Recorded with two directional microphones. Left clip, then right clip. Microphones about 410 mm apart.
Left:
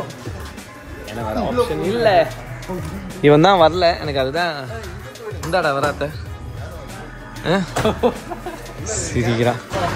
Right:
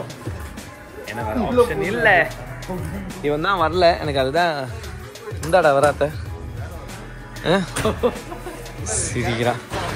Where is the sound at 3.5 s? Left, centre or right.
Centre.